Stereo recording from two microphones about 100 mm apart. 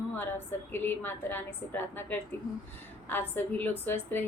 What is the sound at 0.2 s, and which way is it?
A woman's voice, 20° left (ahead or behind).